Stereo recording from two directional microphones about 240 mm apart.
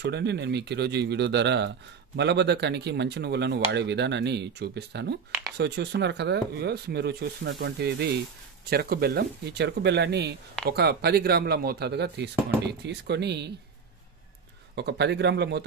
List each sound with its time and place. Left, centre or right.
0.0 s speech: right
14.8 s speech: right